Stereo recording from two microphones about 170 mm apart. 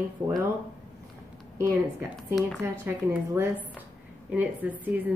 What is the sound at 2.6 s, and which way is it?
A woman's voice, 15° right (ahead or behind).